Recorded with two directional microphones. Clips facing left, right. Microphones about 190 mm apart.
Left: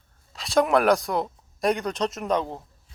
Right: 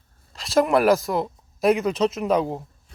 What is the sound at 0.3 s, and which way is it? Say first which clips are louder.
Speech: right 2 dB; centre (ahead or behind).